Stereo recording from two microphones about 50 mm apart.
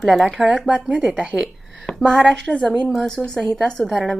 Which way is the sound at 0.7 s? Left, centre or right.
Right.